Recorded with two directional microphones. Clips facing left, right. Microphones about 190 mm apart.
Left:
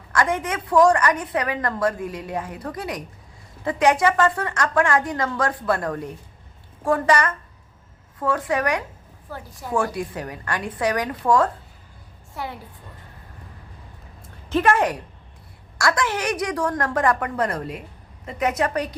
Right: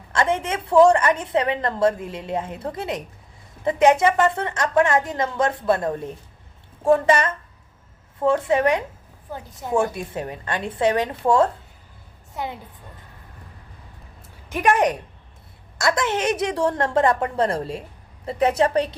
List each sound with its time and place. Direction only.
0.1 s a woman's voice: 25° right (ahead or behind)
14.5 s a woman's voice: 15° right (ahead or behind)